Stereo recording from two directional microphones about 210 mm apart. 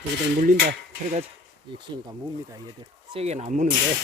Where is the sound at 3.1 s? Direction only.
30° right (ahead or behind).